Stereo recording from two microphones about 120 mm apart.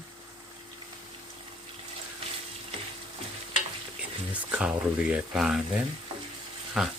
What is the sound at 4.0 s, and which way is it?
Speech, 10° right (ahead or behind).